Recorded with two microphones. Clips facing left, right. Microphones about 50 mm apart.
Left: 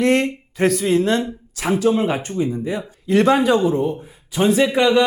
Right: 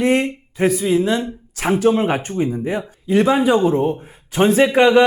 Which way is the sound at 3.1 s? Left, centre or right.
Centre.